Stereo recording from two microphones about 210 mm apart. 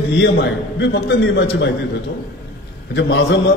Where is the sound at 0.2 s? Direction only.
55° left (ahead or behind).